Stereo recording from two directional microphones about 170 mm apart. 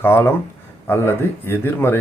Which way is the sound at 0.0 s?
15° left (ahead or behind).